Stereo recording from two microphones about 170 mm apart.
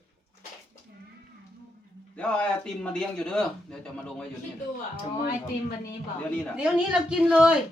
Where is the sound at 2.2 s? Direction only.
5° left (ahead or behind).